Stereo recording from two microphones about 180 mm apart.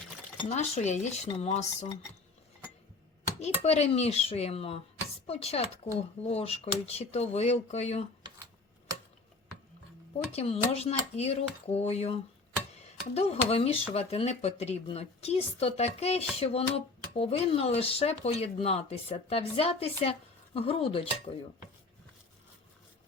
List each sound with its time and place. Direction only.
0.4 s speech: 40° left (ahead or behind)
3.4 s speech: 35° left (ahead or behind)
10.3 s speech: 35° left (ahead or behind)